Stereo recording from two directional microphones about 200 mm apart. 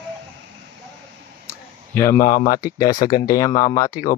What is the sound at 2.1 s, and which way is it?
Speech, 40° left (ahead or behind).